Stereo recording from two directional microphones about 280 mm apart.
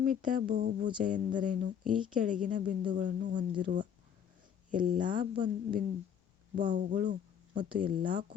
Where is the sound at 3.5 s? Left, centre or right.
Centre.